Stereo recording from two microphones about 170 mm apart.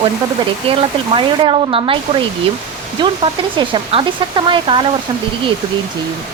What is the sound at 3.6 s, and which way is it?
Speech, 30° right (ahead or behind).